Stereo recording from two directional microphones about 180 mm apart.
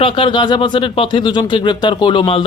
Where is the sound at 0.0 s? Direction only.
25° left (ahead or behind).